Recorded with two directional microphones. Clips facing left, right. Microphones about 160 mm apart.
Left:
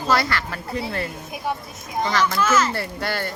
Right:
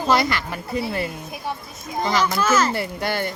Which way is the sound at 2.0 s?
10° right (ahead or behind).